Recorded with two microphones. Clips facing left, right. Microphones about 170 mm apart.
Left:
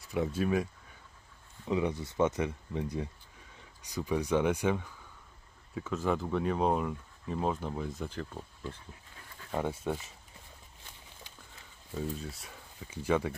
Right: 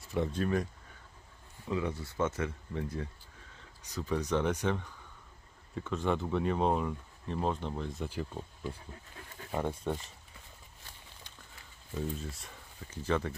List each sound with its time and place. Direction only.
0.0 s speech: 5° left (ahead or behind)
1.7 s speech: 20° left (ahead or behind); by 8.7 s 10° right (ahead or behind)
9.6 s speech: 5° left (ahead or behind)
11.9 s speech: centre (ahead or behind)